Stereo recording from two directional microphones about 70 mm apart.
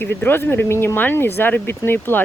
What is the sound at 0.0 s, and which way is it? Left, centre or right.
Speech, left.